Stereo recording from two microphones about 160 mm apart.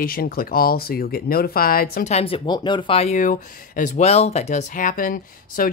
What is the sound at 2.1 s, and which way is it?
Speech, 40° left (ahead or behind).